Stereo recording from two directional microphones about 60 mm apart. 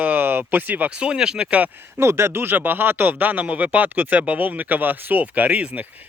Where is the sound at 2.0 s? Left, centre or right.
Right.